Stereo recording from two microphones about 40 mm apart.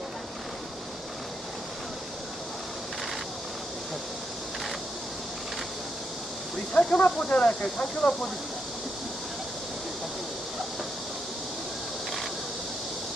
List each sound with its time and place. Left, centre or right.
6.7 s speech: left
7.3 s speech: left
7.6 s speech: left